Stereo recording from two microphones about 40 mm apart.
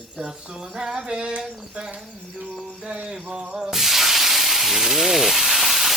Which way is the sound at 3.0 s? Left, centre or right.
Centre.